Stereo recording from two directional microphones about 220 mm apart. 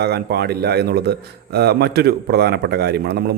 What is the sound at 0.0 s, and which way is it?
A man's voice, 50° right (ahead or behind).